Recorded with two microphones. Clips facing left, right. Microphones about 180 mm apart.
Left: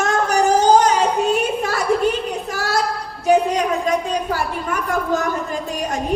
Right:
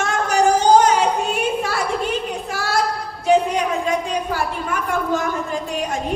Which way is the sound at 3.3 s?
40° left (ahead or behind).